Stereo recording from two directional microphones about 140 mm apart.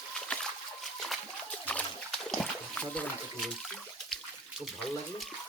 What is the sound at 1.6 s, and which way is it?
Splash, 10° left (ahead or behind).